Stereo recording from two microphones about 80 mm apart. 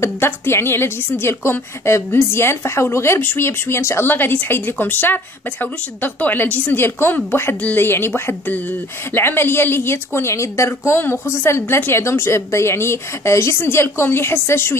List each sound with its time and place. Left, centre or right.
0.0 s a woman's voice: left